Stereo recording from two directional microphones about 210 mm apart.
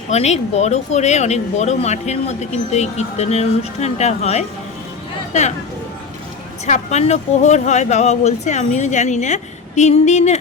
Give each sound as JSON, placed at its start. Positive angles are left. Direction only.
{"t": 0.1, "sound": "speech", "side_deg": 30}
{"t": 6.7, "sound": "speech", "side_deg": 35}